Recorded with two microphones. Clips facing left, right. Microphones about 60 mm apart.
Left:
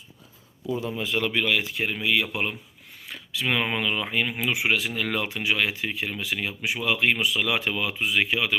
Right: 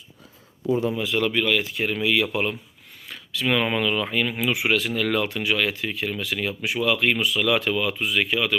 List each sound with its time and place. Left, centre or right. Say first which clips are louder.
0.9 s a man's voice: right 3 dB; centre
1.3 s speech: right 2 dB; centre
2.0 s speech: right 3 dB; centre